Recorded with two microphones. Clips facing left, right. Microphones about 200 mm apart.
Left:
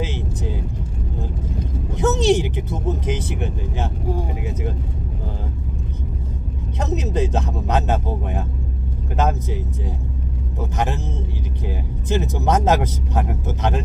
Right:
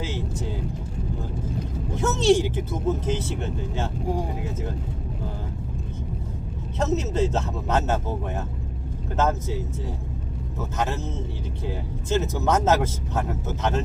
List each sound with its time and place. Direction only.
0.0 s vehicle: 20° left (ahead or behind)
2.0 s speech: 20° left (ahead or behind)
6.7 s speech: 15° left (ahead or behind)